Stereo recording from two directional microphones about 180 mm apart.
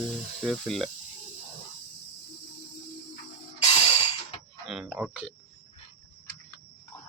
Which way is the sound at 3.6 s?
35° left (ahead or behind).